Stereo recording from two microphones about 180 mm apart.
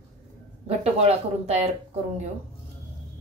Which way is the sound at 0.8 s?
35° right (ahead or behind).